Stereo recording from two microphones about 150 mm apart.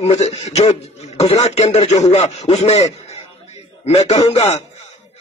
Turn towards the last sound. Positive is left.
turn(degrees=45)  # may be behind; listen again after turning